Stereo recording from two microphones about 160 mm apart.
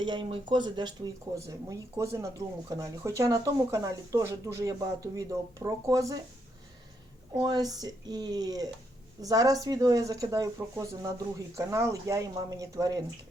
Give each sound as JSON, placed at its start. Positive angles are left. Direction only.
{"t": 0.0, "sound": "speech", "side_deg": -30}
{"t": 7.3, "sound": "speech", "side_deg": -25}